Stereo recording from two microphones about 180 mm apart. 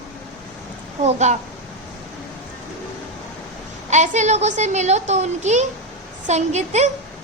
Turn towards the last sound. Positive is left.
turn(degrees=-40)  # may be behind; listen again after turning